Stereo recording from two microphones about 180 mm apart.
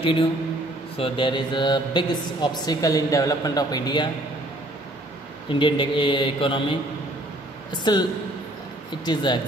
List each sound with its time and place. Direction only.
0.0 s a man's voice: 30° left (ahead or behind)
5.5 s speech: 30° left (ahead or behind)